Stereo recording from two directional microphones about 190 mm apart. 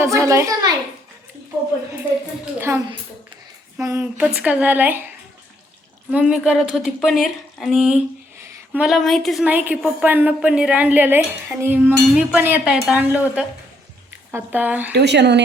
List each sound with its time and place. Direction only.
0.0 s speech: 15° right (ahead or behind)
2.4 s speech: 10° right (ahead or behind)
6.1 s speech: 5° right (ahead or behind)
14.9 s a woman's voice: 65° right (ahead or behind)